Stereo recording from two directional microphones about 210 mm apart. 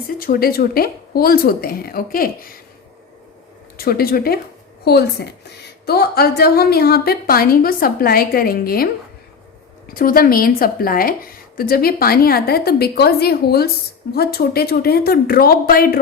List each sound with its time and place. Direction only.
0.2 s a woman's voice: 45° left (ahead or behind)
3.8 s a woman's voice: 45° left (ahead or behind)
9.9 s a woman's voice: 45° left (ahead or behind)